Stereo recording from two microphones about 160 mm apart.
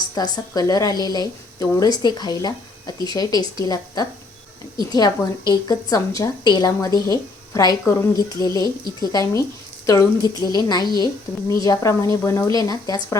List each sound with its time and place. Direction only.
0.1 s a woman's voice: 25° left (ahead or behind)